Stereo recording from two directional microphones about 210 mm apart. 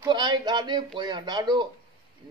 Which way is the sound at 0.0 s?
20° right (ahead or behind).